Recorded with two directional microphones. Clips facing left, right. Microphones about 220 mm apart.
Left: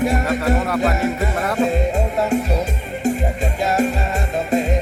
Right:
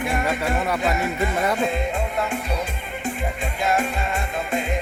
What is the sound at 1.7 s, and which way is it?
Music, 40° left (ahead or behind).